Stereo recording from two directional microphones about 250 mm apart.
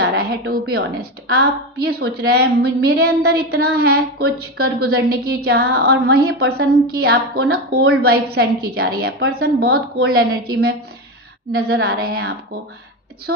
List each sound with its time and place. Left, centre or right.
0.0 s a sound: right
0.5 s a woman's voice: right
9.0 s a woman's voice: right
9.4 s a woman's voice: right
11.9 s a woman's voice: right